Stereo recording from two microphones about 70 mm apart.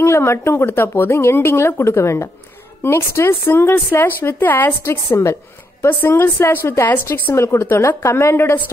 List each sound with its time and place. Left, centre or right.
0.0 s speech: left